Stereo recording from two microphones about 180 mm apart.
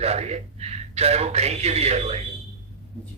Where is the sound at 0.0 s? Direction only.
35° right (ahead or behind).